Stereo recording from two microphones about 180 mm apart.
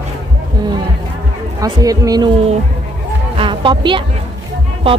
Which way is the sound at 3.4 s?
25° right (ahead or behind).